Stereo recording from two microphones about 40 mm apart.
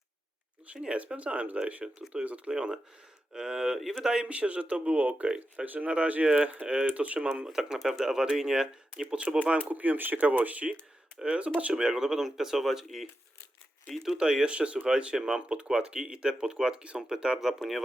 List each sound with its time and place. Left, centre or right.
0.7 s speech: right
1.8 s speech: right
2.2 s speech: right
2.5 s speech: centre
4.3 s speech: right
5.6 s speech: right
5.9 s speech: right
7.4 s speech: centre
9.6 s speech: right
11.7 s speech: centre
14.2 s speech: centre
14.5 s speech: right
17.4 s speech: centre